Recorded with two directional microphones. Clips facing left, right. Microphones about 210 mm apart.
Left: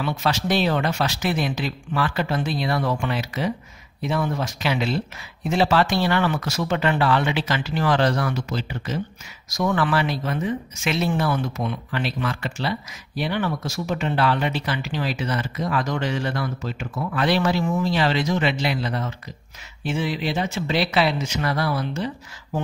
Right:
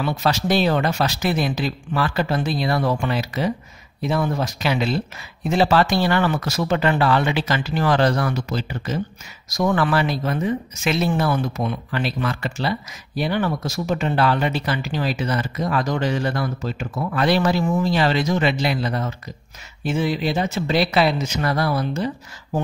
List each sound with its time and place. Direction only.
0.0 s speech: 40° right (ahead or behind)